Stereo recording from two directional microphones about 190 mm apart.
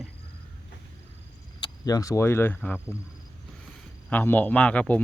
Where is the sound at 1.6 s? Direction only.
20° left (ahead or behind).